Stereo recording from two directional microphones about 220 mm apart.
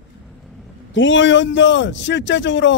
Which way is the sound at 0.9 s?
60° left (ahead or behind).